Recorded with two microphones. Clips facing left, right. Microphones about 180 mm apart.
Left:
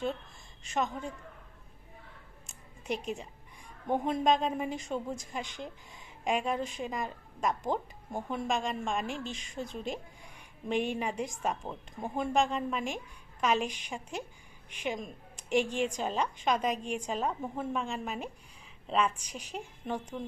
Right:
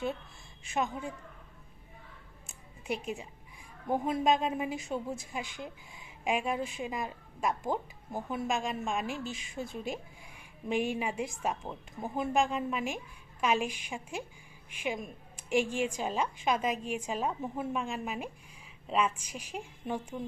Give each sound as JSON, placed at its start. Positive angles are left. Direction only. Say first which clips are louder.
{"t": 0.6, "sound": "a woman's voice", "louder": "even", "side_deg": -10}
{"t": 2.8, "sound": "a woman's voice", "louder": "left 1 dB", "side_deg": -5}